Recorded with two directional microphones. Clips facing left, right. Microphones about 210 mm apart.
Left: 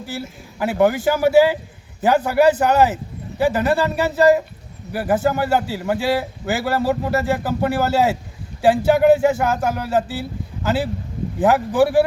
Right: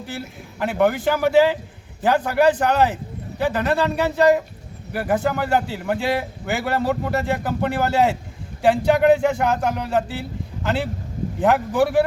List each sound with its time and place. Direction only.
0.0 s a man's voice: 5° left (ahead or behind)